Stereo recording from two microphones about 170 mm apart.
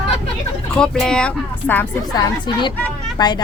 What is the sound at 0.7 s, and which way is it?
Speech, 5° left (ahead or behind).